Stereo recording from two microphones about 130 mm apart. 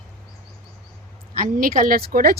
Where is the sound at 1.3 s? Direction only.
90° right.